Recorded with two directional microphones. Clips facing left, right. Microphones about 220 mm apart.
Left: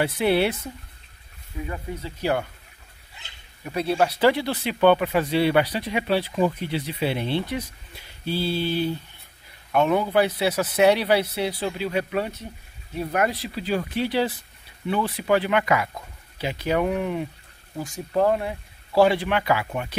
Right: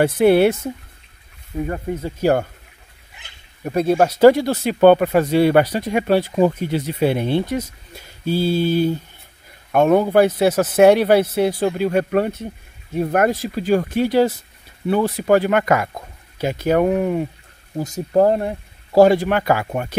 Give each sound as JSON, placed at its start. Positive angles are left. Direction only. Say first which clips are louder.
{"t": 0.0, "sound": "speech", "louder": "right 8 dB", "side_deg": -50}
{"t": 1.6, "sound": "speech", "louder": "right 8 dB", "side_deg": -50}
{"t": 3.6, "sound": "speech", "louder": "right 6 dB", "side_deg": -45}